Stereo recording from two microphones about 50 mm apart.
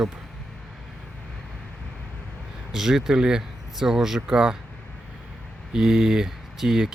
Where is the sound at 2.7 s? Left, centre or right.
Centre.